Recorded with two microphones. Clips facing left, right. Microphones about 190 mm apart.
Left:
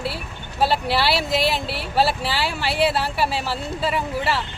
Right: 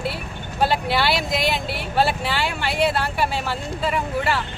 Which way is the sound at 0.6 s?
30° left (ahead or behind).